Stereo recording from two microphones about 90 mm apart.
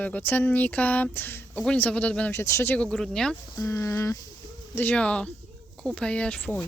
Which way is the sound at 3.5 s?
30° left (ahead or behind).